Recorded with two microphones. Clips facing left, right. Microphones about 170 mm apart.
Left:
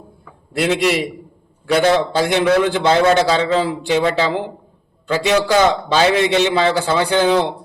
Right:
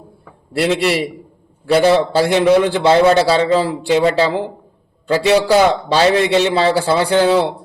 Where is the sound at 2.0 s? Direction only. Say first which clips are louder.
Right 3 dB; 35° right (ahead or behind).